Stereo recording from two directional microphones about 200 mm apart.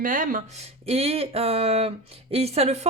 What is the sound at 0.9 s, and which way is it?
Speech, 30° right (ahead or behind).